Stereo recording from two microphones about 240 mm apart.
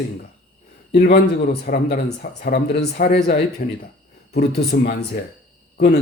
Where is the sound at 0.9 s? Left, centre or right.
Left.